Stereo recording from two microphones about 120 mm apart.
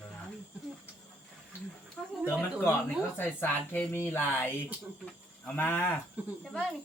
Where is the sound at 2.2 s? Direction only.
20° left (ahead or behind).